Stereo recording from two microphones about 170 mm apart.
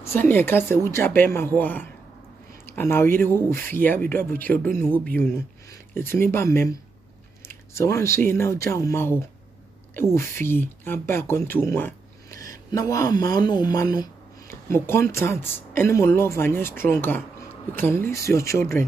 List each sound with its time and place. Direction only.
0.0 s speech: 15° left (ahead or behind)